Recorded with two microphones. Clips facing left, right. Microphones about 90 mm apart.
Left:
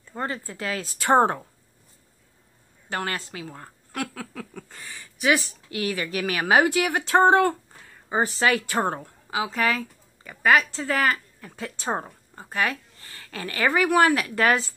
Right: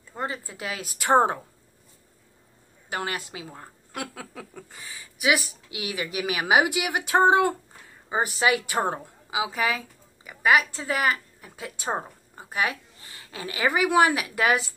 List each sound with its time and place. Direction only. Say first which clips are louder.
0.2 s a woman's voice: left 2 dB; 15° right (ahead or behind)
2.9 s a woman's voice: left 1 dB; 15° right (ahead or behind)
4.8 s a woman's voice: left 2 dB; 5° right (ahead or behind)